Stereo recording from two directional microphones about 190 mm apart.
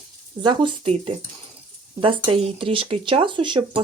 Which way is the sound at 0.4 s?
30° right (ahead or behind).